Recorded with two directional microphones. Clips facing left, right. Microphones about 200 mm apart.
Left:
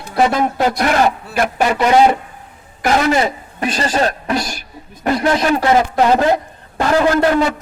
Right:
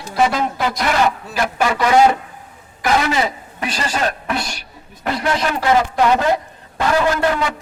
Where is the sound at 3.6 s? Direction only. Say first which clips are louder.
Left 4 dB; 40° left (ahead or behind).